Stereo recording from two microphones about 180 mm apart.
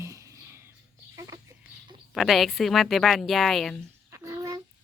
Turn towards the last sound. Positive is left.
turn(degrees=-20)  # may be behind; listen again after turning